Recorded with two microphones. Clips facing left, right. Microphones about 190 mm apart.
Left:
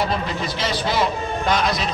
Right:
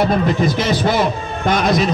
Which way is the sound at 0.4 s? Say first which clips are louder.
Right 8 dB; 50° right (ahead or behind).